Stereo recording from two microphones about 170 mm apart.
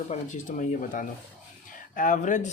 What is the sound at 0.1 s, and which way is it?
Speech, 50° left (ahead or behind).